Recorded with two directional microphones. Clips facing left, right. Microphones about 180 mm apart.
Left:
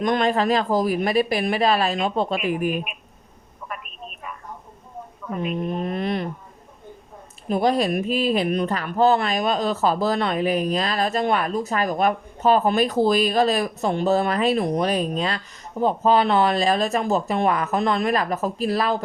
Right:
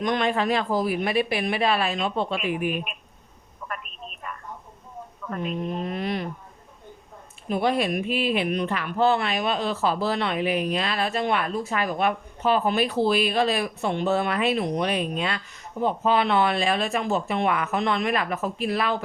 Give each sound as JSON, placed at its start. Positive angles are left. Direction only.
{"t": 0.0, "sound": "speech", "side_deg": 45}
{"t": 3.7, "sound": "telephone", "side_deg": 5}
{"t": 5.4, "sound": "speech", "side_deg": 55}
{"t": 7.4, "sound": "speech", "side_deg": 40}